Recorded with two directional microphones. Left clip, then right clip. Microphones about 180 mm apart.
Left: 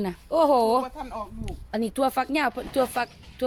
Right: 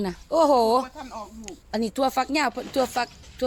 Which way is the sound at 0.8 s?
55° left (ahead or behind).